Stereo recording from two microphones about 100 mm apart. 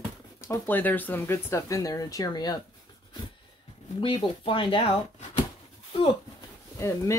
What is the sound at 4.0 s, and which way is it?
Speech, 60° left (ahead or behind).